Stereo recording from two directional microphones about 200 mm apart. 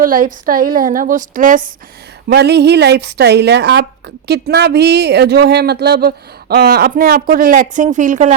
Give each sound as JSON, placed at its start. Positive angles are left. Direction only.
{"t": 0.0, "sound": "speech", "side_deg": -40}
{"t": 2.2, "sound": "speech", "side_deg": -55}